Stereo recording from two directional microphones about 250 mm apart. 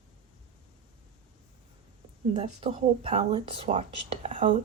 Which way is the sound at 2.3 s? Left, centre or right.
Right.